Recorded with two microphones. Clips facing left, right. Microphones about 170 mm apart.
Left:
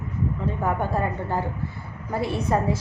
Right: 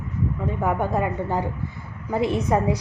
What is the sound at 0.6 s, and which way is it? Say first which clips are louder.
A woman's voice: right 2 dB; 15° right (ahead or behind).